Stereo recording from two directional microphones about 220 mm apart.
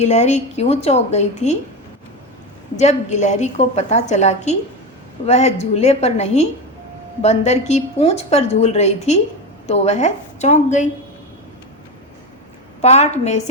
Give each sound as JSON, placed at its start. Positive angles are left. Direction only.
{"t": 0.0, "sound": "a woman's voice", "side_deg": 30}
{"t": 2.7, "sound": "a woman's voice", "side_deg": 30}
{"t": 12.8, "sound": "a woman's voice", "side_deg": 30}